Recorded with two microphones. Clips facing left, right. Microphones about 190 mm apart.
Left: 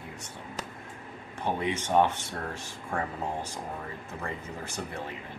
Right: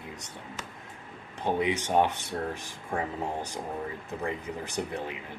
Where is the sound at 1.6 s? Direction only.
15° right (ahead or behind).